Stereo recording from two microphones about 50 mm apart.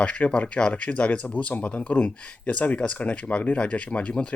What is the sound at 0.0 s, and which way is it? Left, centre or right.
Speech, left.